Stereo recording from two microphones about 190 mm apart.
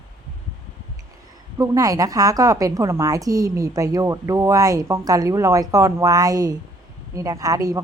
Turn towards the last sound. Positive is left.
turn(degrees=-20)  # may be behind; listen again after turning